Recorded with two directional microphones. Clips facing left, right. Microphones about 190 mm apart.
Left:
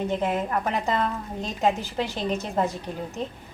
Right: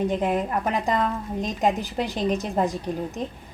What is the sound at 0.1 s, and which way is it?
A woman's voice, 15° right (ahead or behind).